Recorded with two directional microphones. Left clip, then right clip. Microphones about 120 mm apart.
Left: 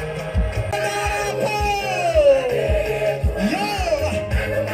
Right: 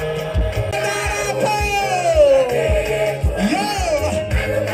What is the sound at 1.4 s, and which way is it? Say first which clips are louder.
Music: right 5 dB; 20° right (ahead or behind).